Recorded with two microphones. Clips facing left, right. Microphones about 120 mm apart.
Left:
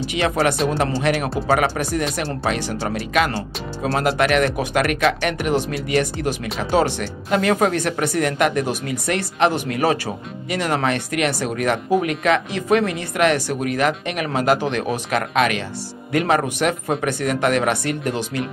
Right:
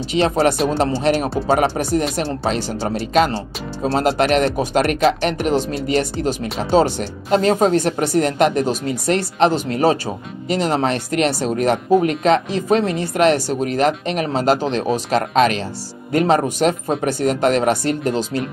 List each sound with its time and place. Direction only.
0.0 s speech: 30° right (ahead or behind)